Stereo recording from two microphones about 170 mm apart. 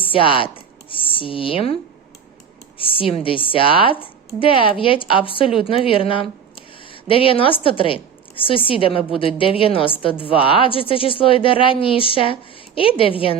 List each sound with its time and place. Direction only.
0.0 s a woman's voice: 30° left (ahead or behind)